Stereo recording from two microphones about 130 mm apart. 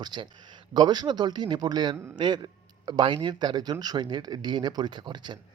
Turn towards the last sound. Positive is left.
turn(degrees=-35)  # may be behind; listen again after turning